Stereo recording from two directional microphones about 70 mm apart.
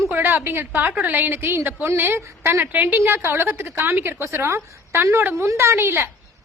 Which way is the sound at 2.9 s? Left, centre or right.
Right.